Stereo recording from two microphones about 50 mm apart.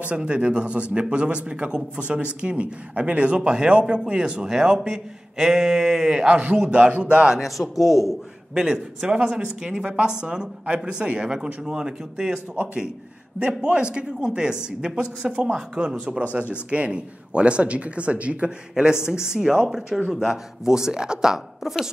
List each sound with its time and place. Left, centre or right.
0.0 s a man's voice: right
7.3 s a man's voice: centre